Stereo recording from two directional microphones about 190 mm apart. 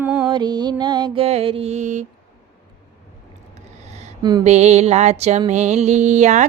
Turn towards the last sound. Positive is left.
turn(degrees=-40)  # may be behind; listen again after turning